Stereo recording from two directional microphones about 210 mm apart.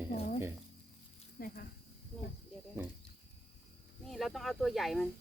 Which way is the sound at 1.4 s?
45° left (ahead or behind).